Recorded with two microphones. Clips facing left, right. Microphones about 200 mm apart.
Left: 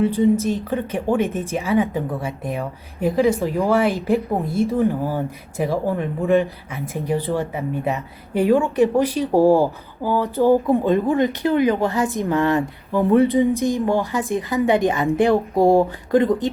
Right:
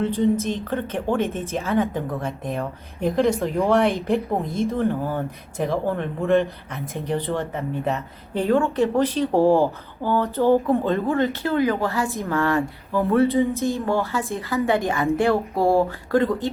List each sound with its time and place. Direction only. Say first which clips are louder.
0.0 s a woman's voice: left 4 dB; 10° left (ahead or behind)
6.7 s speech: left 3 dB; 10° left (ahead or behind)